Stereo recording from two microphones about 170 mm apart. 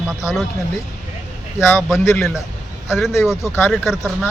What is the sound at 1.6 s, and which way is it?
Speech, 15° left (ahead or behind).